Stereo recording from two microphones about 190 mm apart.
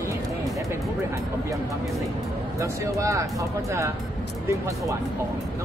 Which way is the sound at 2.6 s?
15° right (ahead or behind).